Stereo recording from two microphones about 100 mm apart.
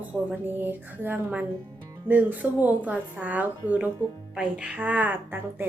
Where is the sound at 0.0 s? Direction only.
15° right (ahead or behind).